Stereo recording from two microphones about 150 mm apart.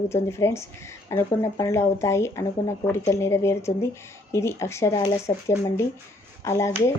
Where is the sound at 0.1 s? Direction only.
20° left (ahead or behind).